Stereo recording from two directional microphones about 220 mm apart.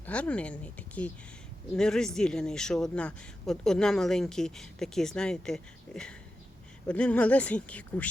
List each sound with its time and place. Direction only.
0.0 s speech: 5° left (ahead or behind)